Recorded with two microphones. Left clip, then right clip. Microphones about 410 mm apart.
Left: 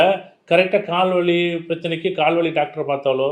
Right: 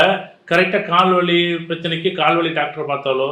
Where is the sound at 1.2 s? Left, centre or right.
Left.